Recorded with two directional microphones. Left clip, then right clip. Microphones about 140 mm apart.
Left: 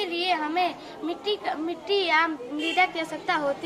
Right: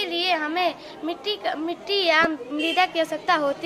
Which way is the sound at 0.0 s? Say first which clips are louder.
Right 2 dB; 90° right.